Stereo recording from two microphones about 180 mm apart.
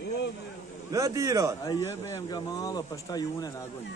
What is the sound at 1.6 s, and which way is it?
Speech, 20° left (ahead or behind).